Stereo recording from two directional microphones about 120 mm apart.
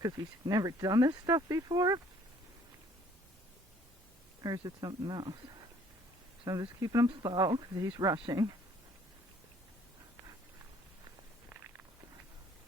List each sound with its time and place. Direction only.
0.0 s speech: 30° right (ahead or behind)
4.4 s speech: 30° right (ahead or behind)
6.4 s speech: 30° right (ahead or behind)